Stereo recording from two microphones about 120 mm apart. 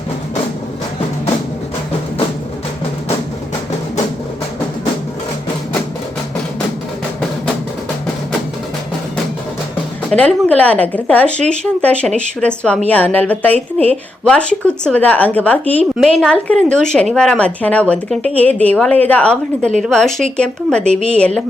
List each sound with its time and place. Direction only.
10.1 s speech: 10° left (ahead or behind)
20.8 s a woman's voice: 65° right (ahead or behind)